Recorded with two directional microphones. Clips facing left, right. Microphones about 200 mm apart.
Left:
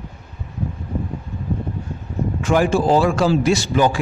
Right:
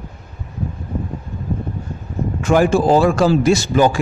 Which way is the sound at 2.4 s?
45° right (ahead or behind).